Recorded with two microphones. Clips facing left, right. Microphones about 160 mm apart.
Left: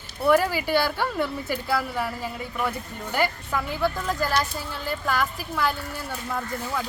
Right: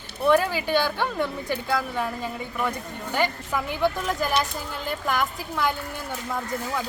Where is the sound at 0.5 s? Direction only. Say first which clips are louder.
Even; 10° left (ahead or behind).